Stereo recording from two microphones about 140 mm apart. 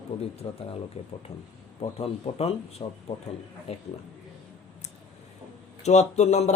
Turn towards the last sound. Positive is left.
turn(degrees=55)  # may be behind; listen again after turning